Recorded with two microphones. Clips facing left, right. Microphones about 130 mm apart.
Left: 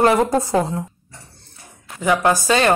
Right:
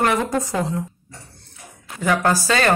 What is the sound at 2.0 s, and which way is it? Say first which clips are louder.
Speech: left 2 dB; 20° left (ahead or behind).